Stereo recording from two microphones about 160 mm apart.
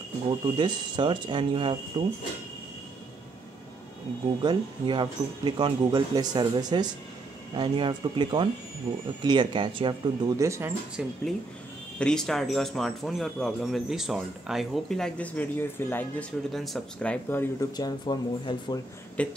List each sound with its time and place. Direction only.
0.3 s speech: 30° right (ahead or behind)
4.4 s speech: 30° right (ahead or behind)
11.0 s speech: 5° right (ahead or behind); by 16.3 s 10° left (ahead or behind)
16.5 s speech: centre (ahead or behind)
17.7 s speech: 25° left (ahead or behind)
19.2 s speech: 10° left (ahead or behind)